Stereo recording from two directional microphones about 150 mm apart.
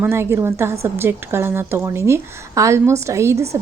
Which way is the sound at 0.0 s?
15° right (ahead or behind).